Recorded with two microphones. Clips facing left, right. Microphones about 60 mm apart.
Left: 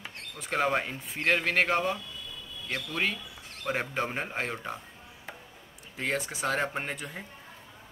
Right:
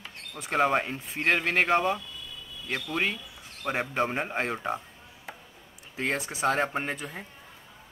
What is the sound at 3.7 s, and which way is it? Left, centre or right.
Speech, centre.